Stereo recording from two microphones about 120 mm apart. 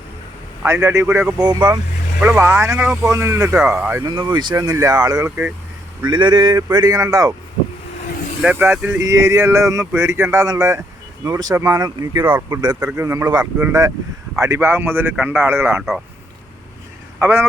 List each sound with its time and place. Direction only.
0.6 s speech: 20° right (ahead or behind)
1.4 s speech: 35° right (ahead or behind)
2.2 s speech: 15° right (ahead or behind)
3.6 s a man's voice: 10° right (ahead or behind)
4.0 s speech: 40° right (ahead or behind); by 5.5 s 20° right (ahead or behind)
6.0 s speech: 40° right (ahead or behind)
8.4 s speech: 15° right (ahead or behind); by 12.2 s 35° right (ahead or behind)
12.2 s a man's voice: 15° right (ahead or behind)
14.4 s a man's voice: 25° right (ahead or behind)
17.2 s speech: 20° right (ahead or behind)